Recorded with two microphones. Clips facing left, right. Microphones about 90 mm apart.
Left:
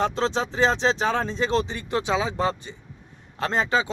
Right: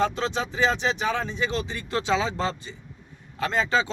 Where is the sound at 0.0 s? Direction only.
25° left (ahead or behind).